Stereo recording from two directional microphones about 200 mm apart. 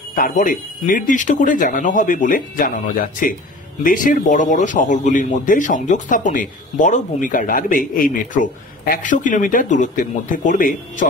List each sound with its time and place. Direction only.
0.1 s speech: 45° left (ahead or behind)